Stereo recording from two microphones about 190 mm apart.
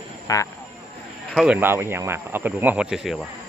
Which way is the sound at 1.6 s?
10° right (ahead or behind).